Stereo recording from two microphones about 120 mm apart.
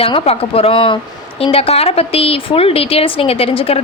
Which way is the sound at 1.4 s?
55° left (ahead or behind).